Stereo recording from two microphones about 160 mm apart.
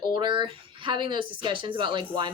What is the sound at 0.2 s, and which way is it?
Speech, 30° right (ahead or behind).